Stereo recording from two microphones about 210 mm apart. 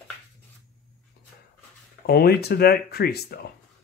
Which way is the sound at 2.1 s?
50° left (ahead or behind).